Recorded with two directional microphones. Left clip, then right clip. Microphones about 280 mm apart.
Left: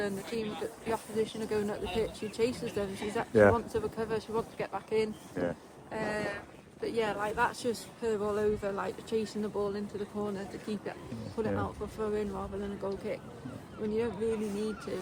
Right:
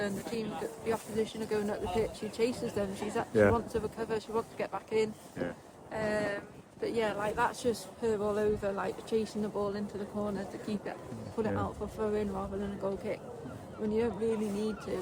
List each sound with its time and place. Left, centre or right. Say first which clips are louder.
0.0 s speech: left 1 dB; centre
5.4 s speech: left 4 dB; centre
5.9 s a sound: right 2 dB; centre
6.8 s speech: even; centre